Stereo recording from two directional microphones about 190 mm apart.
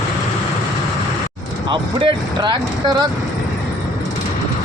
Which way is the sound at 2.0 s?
25° right (ahead or behind).